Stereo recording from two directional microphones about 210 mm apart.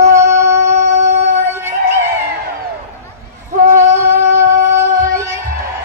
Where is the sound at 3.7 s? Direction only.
15° right (ahead or behind).